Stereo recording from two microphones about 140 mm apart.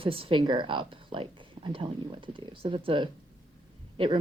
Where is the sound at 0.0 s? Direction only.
40° right (ahead or behind).